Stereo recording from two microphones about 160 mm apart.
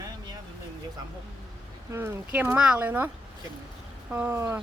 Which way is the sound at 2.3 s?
10° right (ahead or behind).